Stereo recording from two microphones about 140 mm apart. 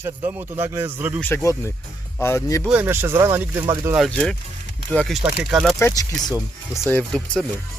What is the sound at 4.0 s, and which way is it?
Speech, centre (ahead or behind).